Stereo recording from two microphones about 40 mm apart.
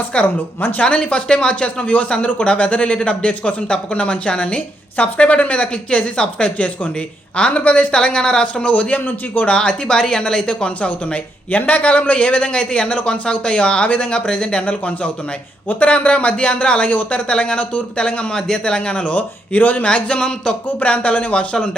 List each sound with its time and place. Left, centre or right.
0.1 s speech: left
4.9 s speech: left
8.6 s speech: left
9.0 s a man's voice: left
9.5 s speech: left
13.8 s speech: left
14.1 s speech: left
18.3 s speech: centre
19.1 s speech: left
19.8 s speech: left
20.8 s speech: left